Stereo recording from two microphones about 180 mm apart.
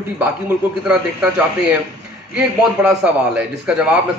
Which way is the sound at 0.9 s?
5° right (ahead or behind).